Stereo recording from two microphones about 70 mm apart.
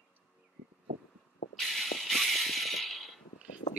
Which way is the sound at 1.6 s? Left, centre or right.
Centre.